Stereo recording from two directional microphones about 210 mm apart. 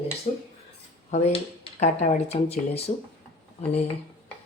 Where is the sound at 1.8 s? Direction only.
30° left (ahead or behind).